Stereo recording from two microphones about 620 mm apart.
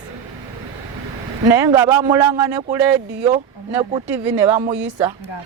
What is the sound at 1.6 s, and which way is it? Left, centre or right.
Speech, centre.